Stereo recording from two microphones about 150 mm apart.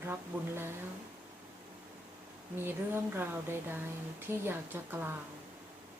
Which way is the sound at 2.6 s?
15° right (ahead or behind).